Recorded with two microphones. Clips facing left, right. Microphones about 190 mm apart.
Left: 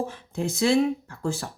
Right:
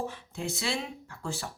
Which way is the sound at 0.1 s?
45° left (ahead or behind).